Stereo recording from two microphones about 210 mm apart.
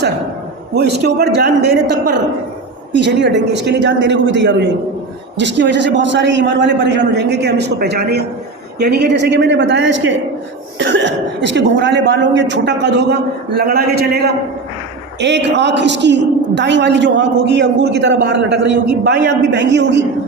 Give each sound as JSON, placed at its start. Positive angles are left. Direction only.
{"t": 0.8, "sound": "a man's voice", "side_deg": -50}